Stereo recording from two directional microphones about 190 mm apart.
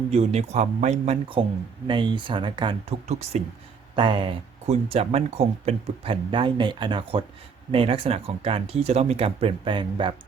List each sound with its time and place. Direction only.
0.1 s speech: 35° right (ahead or behind)